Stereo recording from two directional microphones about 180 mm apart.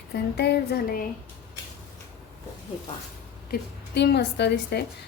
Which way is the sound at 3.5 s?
65° left (ahead or behind).